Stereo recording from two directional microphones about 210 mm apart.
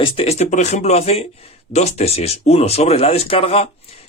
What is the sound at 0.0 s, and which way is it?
Speech, 25° left (ahead or behind).